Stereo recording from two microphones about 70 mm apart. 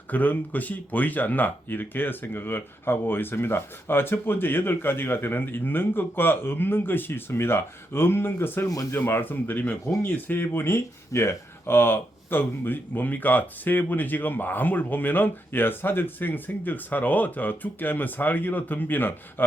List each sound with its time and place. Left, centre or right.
0.1 s speech: left
8.6 s speech: left
8.9 s speech: left